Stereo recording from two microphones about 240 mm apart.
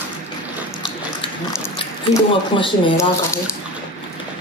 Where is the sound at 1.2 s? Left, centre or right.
Left.